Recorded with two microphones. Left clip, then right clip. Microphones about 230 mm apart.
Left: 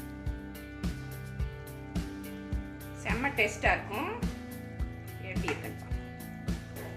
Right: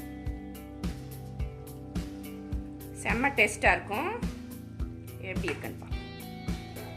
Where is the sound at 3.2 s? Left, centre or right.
Right.